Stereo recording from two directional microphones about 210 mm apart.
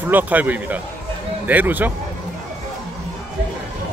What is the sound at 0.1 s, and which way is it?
Speech, 5° right (ahead or behind).